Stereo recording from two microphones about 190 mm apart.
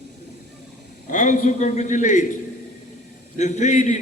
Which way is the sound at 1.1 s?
40° left (ahead or behind).